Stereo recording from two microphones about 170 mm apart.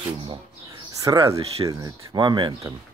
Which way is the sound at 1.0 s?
20° right (ahead or behind).